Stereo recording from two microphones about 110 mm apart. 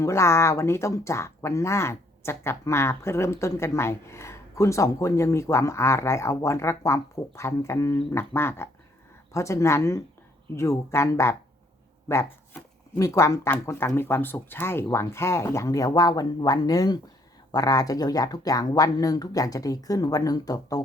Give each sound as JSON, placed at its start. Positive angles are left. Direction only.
{"t": 0.0, "sound": "speech", "side_deg": 25}